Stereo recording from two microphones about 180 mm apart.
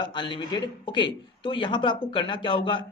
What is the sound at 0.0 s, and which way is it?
Speech, 25° left (ahead or behind).